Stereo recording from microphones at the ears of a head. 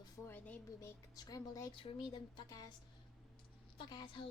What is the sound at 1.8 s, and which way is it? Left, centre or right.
A woman's voice, left.